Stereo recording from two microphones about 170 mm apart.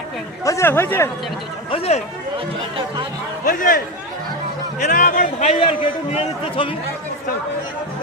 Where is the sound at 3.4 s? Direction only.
55° left (ahead or behind).